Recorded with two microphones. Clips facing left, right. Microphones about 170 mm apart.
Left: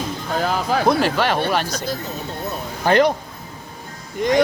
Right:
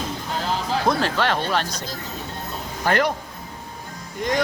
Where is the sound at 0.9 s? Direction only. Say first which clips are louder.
Left 2 dB; 10° left (ahead or behind).